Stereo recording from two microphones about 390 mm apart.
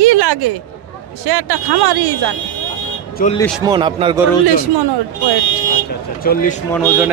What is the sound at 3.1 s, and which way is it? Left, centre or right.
Speech, centre.